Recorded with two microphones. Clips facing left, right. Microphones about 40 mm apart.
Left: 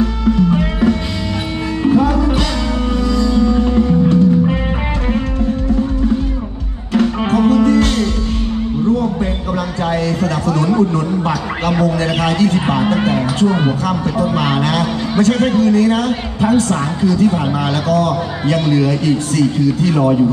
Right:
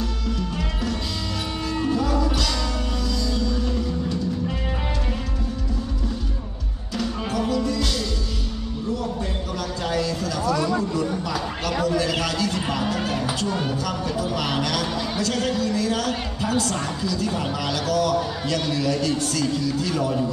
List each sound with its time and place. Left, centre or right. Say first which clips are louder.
0.0 s music: left 13 dB; left
6.9 s music: left 12 dB; left
9.8 s a sound: left 7 dB; left
10.4 s speech: left 6 dB; left
11.7 s a man's voice: left 5 dB; left